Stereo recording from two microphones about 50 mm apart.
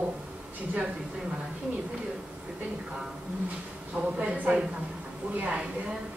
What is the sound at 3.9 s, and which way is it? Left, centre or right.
Speech, right.